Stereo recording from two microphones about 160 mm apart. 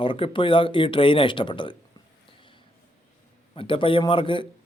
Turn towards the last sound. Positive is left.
turn(degrees=30)  # may be behind; listen again after turning